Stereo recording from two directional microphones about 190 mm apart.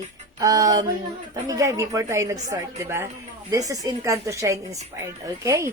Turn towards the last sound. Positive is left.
turn(degrees=-15)  # may be behind; listen again after turning